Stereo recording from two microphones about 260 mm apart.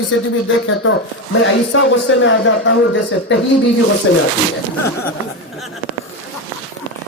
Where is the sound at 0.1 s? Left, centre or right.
Left.